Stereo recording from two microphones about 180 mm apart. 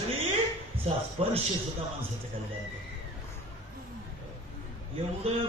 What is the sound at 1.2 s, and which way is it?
Music, 35° right (ahead or behind).